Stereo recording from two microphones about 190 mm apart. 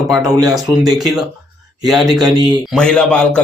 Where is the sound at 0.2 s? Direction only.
15° right (ahead or behind).